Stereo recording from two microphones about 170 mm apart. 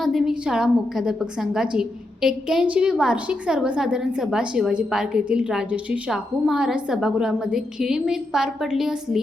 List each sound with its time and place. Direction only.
0.0 s a woman's voice: centre (ahead or behind)